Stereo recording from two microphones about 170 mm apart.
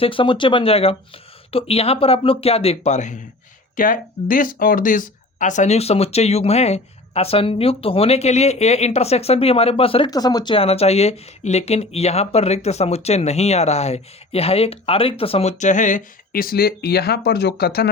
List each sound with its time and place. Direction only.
0.0 s speech: 30° left (ahead or behind)
10.1 s speech: 20° left (ahead or behind); by 17.8 s 65° left (ahead or behind)